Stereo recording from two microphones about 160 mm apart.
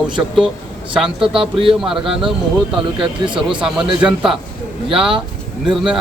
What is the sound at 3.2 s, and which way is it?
Speech, 30° right (ahead or behind).